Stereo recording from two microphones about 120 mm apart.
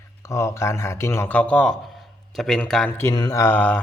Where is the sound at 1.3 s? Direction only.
10° left (ahead or behind).